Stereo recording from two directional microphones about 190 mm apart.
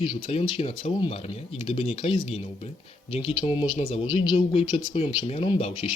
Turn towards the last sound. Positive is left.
turn(degrees=30)  # may be behind; listen again after turning